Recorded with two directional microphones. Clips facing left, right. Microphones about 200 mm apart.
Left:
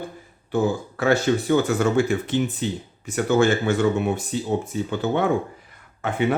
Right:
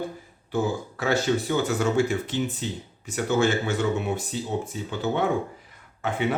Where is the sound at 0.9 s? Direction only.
55° left (ahead or behind).